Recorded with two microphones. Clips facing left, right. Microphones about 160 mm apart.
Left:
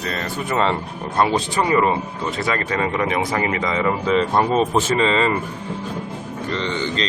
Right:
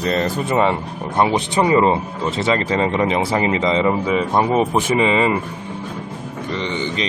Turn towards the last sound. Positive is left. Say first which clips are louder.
# even
turn(degrees=-15)  # may be behind; listen again after turning